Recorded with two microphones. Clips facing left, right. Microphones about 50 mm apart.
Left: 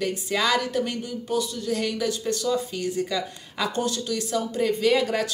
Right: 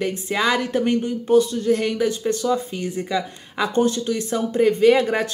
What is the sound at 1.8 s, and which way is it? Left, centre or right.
Speech, right.